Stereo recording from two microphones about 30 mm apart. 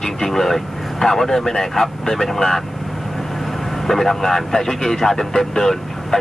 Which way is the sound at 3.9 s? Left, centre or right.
Centre.